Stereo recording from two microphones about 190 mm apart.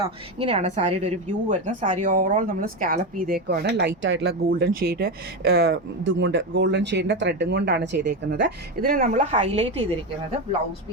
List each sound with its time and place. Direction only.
0.0 s a woman's voice: 30° right (ahead or behind)